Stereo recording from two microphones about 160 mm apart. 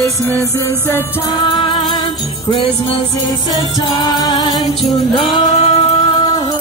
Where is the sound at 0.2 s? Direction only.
15° left (ahead or behind); by 6.4 s 35° left (ahead or behind).